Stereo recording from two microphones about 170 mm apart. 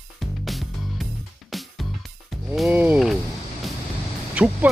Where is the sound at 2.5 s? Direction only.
Centre (ahead or behind).